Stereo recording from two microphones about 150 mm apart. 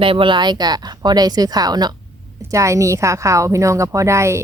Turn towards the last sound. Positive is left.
turn(degrees=-20)  # may be behind; listen again after turning